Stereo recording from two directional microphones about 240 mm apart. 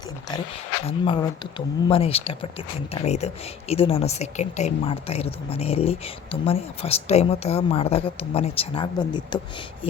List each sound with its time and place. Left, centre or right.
0.9 s speech: left